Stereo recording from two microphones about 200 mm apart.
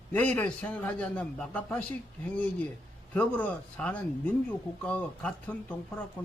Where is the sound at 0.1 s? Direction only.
10° left (ahead or behind).